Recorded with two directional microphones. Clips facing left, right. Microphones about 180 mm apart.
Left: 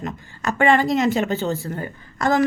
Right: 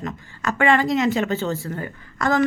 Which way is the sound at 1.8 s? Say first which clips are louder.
Left 1 dB; 35° left (ahead or behind).